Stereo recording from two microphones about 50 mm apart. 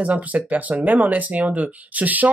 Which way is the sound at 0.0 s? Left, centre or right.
Right.